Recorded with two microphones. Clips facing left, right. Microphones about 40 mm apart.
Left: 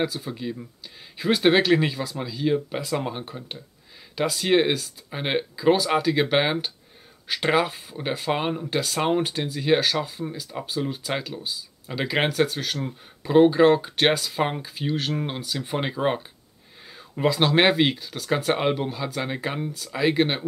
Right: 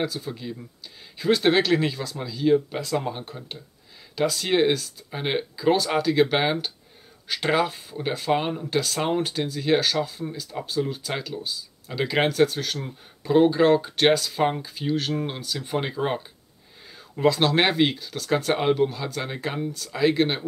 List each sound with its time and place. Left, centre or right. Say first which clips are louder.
0.0 s speech: left 2 dB; centre